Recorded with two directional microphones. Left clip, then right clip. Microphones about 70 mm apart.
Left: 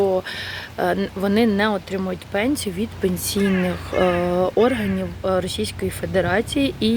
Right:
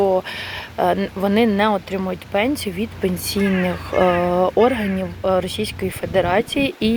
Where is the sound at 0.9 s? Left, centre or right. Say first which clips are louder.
Right 2 dB; left.